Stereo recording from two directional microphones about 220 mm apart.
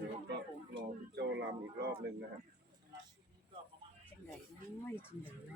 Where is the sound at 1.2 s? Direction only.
50° right (ahead or behind).